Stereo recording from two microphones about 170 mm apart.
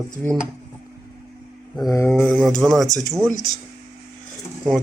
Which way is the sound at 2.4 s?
Centre (ahead or behind).